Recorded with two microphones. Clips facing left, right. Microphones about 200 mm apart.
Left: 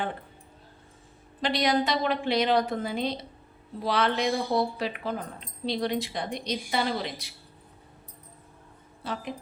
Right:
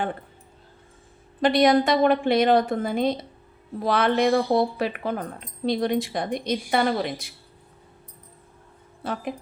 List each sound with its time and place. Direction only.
1.4 s speech: 50° right (ahead or behind)